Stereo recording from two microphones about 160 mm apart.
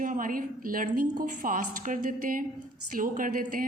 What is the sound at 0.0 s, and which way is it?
A woman's voice, 60° right (ahead or behind).